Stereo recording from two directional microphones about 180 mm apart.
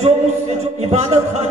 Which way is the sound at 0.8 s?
40° right (ahead or behind).